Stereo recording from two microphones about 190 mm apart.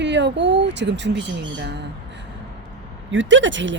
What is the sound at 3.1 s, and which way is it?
Speech, 75° right (ahead or behind).